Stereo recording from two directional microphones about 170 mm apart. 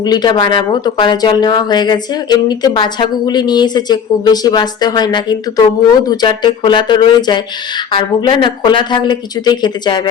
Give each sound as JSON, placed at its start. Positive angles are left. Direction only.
{"t": 0.0, "sound": "speech", "side_deg": 25}